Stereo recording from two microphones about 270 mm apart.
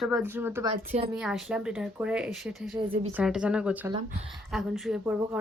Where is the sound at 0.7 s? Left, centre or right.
Right.